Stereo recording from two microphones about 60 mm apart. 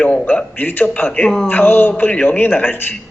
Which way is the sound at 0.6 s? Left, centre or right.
Left.